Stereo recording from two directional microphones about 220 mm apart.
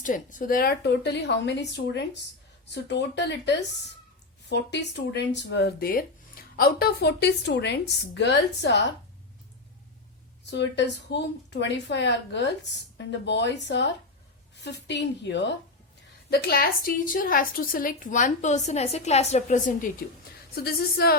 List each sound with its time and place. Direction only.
0.0 s a woman's voice: 35° left (ahead or behind)
10.4 s a woman's voice: 50° left (ahead or behind); by 19.9 s 35° left (ahead or behind)
20.6 s a woman's voice: 45° left (ahead or behind)